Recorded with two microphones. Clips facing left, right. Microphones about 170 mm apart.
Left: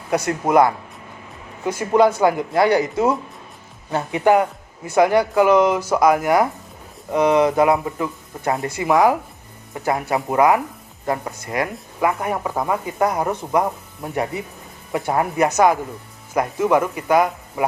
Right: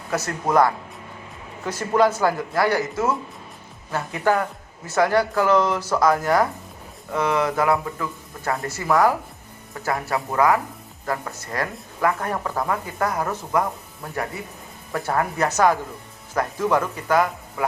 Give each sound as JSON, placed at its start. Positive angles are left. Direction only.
{"t": 0.1, "sound": "speech", "side_deg": 15}
{"t": 1.8, "sound": "speech", "side_deg": 15}